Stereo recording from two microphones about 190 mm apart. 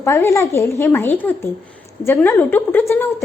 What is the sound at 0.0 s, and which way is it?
A woman's voice, 15° left (ahead or behind).